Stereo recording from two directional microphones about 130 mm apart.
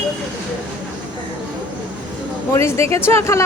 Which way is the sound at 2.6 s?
20° left (ahead or behind).